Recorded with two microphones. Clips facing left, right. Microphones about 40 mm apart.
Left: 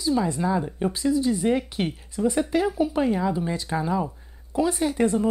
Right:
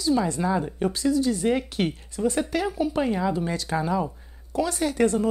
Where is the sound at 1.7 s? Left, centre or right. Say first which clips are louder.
Right 1 dB; centre.